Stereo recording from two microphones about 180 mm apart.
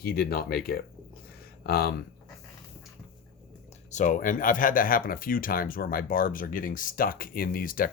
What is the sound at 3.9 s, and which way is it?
Speech, 45° left (ahead or behind).